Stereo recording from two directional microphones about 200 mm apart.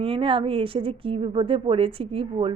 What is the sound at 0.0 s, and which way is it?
A woman's voice, 25° right (ahead or behind).